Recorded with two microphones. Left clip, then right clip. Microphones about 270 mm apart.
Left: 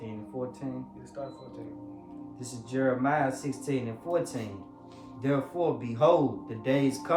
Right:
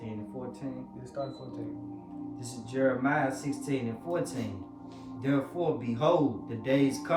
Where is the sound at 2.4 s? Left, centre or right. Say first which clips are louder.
Right 1 dB; centre.